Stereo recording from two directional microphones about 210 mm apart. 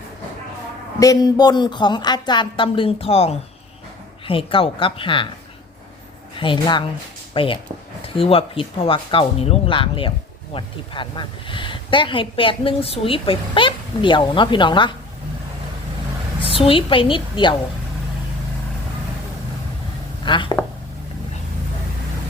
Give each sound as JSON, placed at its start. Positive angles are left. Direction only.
{"t": 0.9, "sound": "a woman's voice", "side_deg": 15}
{"t": 6.3, "sound": "a woman's voice", "side_deg": 25}
{"t": 16.6, "sound": "a woman's voice", "side_deg": 25}
{"t": 20.2, "sound": "speech", "side_deg": 20}